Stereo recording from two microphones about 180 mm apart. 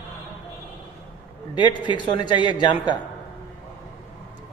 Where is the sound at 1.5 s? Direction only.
25° left (ahead or behind).